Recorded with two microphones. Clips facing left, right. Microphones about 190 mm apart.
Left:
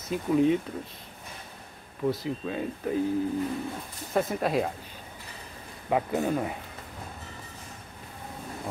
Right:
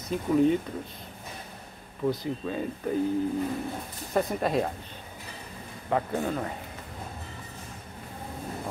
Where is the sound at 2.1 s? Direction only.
Centre (ahead or behind).